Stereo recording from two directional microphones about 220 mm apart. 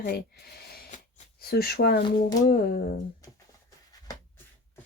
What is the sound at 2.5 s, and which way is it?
Speech, 45° left (ahead or behind).